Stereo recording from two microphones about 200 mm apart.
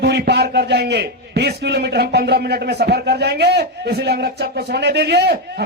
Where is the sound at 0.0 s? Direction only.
55° right (ahead or behind).